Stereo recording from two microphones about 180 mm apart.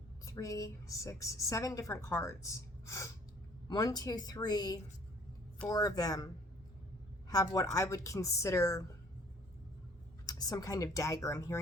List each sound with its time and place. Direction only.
0.3 s a woman's voice: 20° left (ahead or behind)
10.2 s a woman's voice: 20° left (ahead or behind)